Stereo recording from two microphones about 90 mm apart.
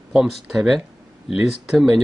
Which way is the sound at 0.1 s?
5° right (ahead or behind).